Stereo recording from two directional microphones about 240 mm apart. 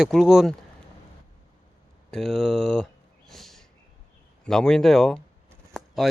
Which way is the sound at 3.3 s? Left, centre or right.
Centre.